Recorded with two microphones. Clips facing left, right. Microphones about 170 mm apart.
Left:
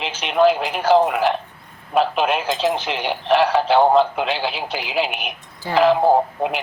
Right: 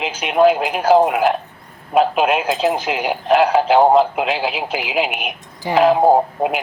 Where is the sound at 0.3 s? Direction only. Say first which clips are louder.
Right 2 dB; 35° right (ahead or behind).